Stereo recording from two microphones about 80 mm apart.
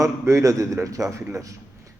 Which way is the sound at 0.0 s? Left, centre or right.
Right.